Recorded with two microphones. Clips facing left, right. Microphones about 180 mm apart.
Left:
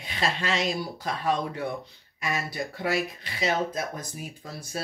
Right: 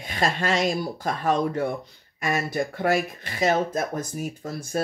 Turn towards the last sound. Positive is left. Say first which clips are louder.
# right 8 dB
turn(degrees=-50)  # may be behind; listen again after turning